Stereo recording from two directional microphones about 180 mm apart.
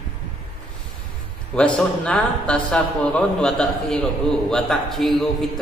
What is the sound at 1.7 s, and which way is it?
Speech, 5° left (ahead or behind).